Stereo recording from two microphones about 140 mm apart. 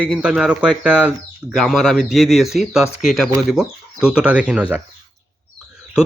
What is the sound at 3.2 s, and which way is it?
Speech, 20° right (ahead or behind).